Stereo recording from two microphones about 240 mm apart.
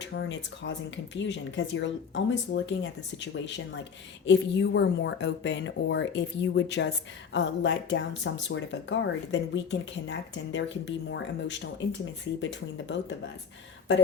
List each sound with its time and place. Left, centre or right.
0.0 s speech: left